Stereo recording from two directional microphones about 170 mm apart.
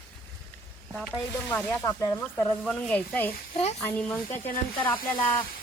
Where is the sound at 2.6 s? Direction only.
5° left (ahead or behind).